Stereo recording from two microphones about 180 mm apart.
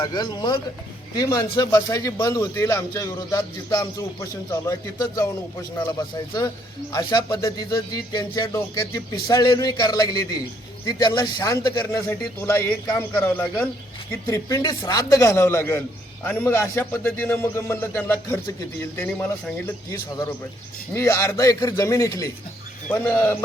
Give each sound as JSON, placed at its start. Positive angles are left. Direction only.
{"t": 0.0, "sound": "a man's voice", "side_deg": 25}